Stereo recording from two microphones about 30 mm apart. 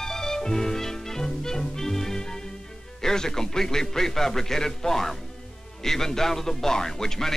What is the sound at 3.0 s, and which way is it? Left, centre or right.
Speech, centre.